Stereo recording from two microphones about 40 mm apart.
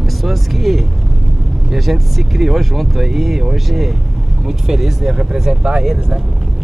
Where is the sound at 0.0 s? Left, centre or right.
Centre.